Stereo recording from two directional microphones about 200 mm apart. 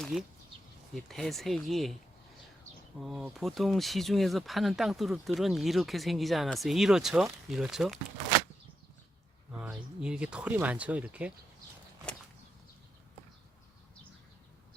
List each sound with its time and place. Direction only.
0.0 s speech: centre (ahead or behind)
3.0 s speech: centre (ahead or behind)
9.5 s speech: 5° right (ahead or behind)